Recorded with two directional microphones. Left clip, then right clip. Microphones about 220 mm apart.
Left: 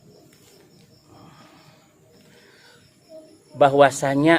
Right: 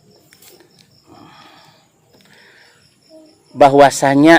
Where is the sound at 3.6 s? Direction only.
40° right (ahead or behind).